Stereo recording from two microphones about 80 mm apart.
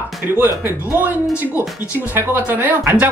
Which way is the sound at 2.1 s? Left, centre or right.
Right.